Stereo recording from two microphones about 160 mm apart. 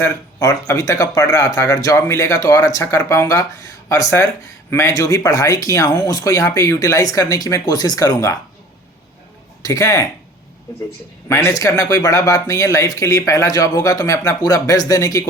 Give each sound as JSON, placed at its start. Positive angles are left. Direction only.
{"t": 0.3, "sound": "speech", "side_deg": 20}
{"t": 9.6, "sound": "speech", "side_deg": 20}
{"t": 11.3, "sound": "speech", "side_deg": 20}